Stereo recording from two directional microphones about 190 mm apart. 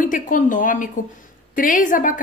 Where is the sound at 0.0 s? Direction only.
45° left (ahead or behind).